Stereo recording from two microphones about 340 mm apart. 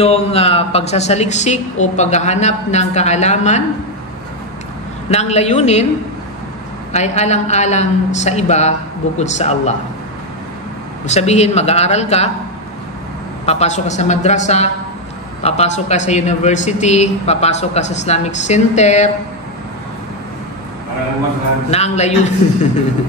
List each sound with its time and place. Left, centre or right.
0.0 s speech: centre
5.1 s speech: centre
6.9 s speech: centre
11.1 s speech: centre
13.5 s speech: centre
21.6 s speech: centre